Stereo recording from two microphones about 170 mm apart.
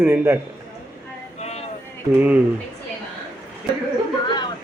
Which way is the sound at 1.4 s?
40° left (ahead or behind).